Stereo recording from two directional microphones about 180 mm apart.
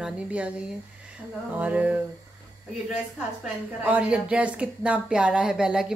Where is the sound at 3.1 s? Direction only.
5° right (ahead or behind).